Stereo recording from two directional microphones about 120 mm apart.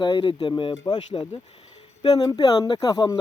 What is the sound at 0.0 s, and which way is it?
Speech, 40° left (ahead or behind).